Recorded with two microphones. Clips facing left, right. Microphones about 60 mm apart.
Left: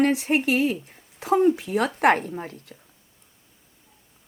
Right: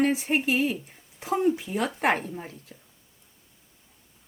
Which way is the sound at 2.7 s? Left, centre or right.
Centre.